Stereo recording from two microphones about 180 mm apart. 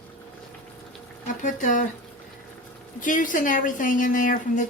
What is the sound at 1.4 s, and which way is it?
Speech, 45° left (ahead or behind).